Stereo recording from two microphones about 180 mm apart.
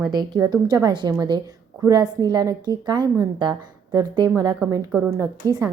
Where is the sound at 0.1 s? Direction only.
20° right (ahead or behind).